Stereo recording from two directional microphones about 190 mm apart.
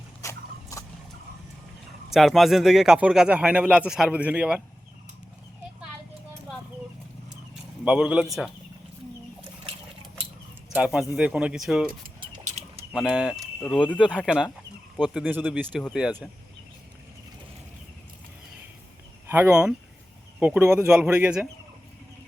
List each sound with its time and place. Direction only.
0.2 s a sound: 15° left (ahead or behind)
2.1 s speech: centre (ahead or behind)
7.9 s speech: 5° right (ahead or behind)
10.8 s speech: 5° right (ahead or behind)
11.9 s a sound: 45° right (ahead or behind)
12.9 s speech: 5° right (ahead or behind)
13.6 s speech: 5° left (ahead or behind)
19.3 s speech: 10° right (ahead or behind)